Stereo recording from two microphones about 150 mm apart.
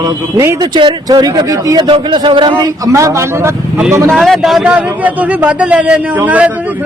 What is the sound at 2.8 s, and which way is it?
Speech, 20° right (ahead or behind).